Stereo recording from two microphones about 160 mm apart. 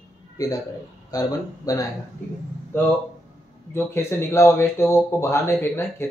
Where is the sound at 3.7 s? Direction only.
15° left (ahead or behind).